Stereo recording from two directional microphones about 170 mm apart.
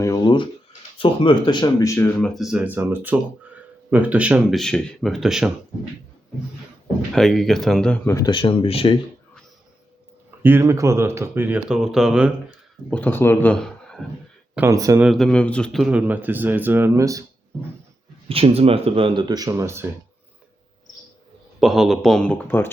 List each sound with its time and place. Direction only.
0.0 s a sound: 25° left (ahead or behind)
0.9 s speech: 30° left (ahead or behind)
2.0 s speech: 5° left (ahead or behind)
7.1 s speech: centre (ahead or behind); by 9.0 s 35° left (ahead or behind)
10.4 s speech: 15° right (ahead or behind)
12.9 s speech: 10° left (ahead or behind)
14.5 s speech: 15° right (ahead or behind)
15.0 s speech: centre (ahead or behind); by 17.2 s 20° right (ahead or behind)
18.3 s speech: 35° right (ahead or behind); by 19.9 s 15° right (ahead or behind)
21.6 s speech: centre (ahead or behind)